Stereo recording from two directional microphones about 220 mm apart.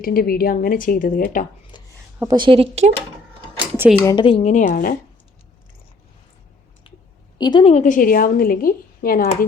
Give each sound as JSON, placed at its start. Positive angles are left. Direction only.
{"t": 0.0, "sound": "a woman's voice", "side_deg": 40}
{"t": 1.7, "sound": "a sound", "side_deg": 20}
{"t": 2.1, "sound": "a woman's voice", "side_deg": -15}
{"t": 3.8, "sound": "speech", "side_deg": -5}
{"t": 4.0, "sound": "a woman's voice", "side_deg": 20}
{"t": 7.3, "sound": "a woman's voice", "side_deg": 20}